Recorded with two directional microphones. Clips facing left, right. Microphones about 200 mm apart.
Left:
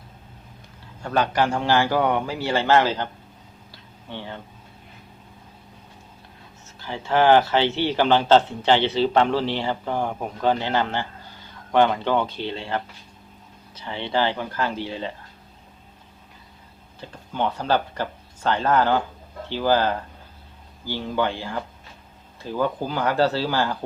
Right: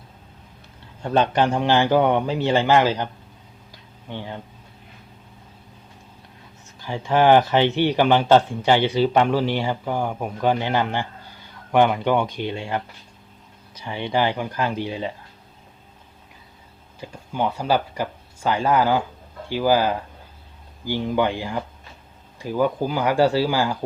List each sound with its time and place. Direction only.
1.0 s a man's voice: 20° right (ahead or behind)
3.7 s a sound: 15° right (ahead or behind)
6.7 s speech: 15° right (ahead or behind)
17.0 s speech: 10° right (ahead or behind)